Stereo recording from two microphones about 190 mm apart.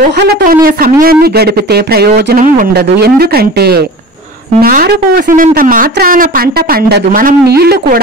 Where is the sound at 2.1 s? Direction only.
45° right (ahead or behind).